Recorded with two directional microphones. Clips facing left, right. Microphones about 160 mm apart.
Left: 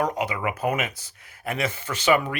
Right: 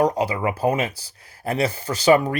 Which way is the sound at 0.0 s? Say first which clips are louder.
Right 5 dB; 35° right (ahead or behind).